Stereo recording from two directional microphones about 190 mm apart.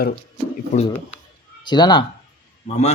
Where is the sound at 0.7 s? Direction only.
35° left (ahead or behind).